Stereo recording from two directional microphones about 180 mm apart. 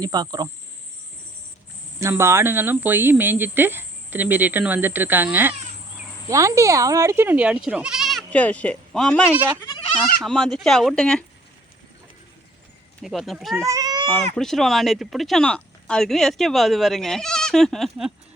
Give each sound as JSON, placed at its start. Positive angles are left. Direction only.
{"t": 0.0, "sound": "cricket", "side_deg": -20}
{"t": 2.0, "sound": "speech", "side_deg": -15}
{"t": 10.2, "sound": "speech", "side_deg": 0}
{"t": 13.0, "sound": "speech", "side_deg": 0}
{"t": 13.7, "sound": "goat", "side_deg": -20}
{"t": 14.3, "sound": "speech", "side_deg": 0}